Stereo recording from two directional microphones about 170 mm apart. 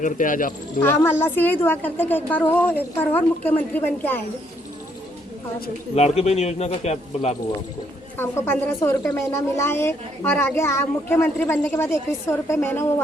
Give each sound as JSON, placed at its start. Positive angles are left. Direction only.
{"t": 0.0, "sound": "speech", "side_deg": 50}
{"t": 0.8, "sound": "a woman's voice", "side_deg": 10}
{"t": 5.9, "sound": "speech", "side_deg": 40}
{"t": 8.2, "sound": "a woman's voice", "side_deg": 10}